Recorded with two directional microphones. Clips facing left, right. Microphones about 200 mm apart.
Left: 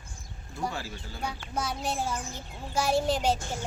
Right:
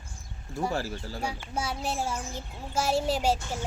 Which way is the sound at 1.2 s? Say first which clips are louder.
Left 1 dB; 10° right (ahead or behind).